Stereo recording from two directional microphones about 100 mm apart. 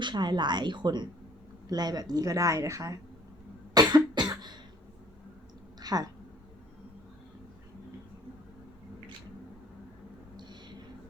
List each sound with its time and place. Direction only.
0.0 s a woman's voice: 50° right (ahead or behind)
3.8 s cough: 45° right (ahead or behind)
5.8 s speech: 40° right (ahead or behind)
10.3 s a sound: 50° right (ahead or behind)